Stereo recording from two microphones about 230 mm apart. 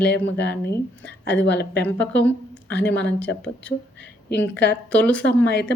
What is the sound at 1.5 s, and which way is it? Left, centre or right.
Speech, left.